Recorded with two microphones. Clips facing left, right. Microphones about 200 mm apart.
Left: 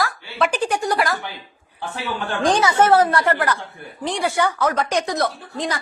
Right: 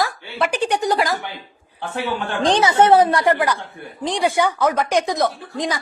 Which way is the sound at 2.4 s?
25° right (ahead or behind).